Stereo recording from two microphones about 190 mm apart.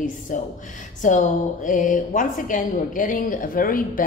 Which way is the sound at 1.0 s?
40° left (ahead or behind).